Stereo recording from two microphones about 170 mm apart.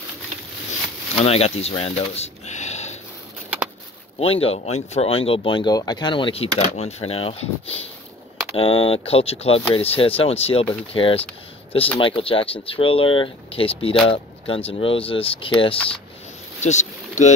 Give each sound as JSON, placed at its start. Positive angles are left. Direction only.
{"t": 1.1, "sound": "a sound", "side_deg": 35}
{"t": 4.2, "sound": "speech", "side_deg": 35}
{"t": 16.6, "sound": "speech", "side_deg": 45}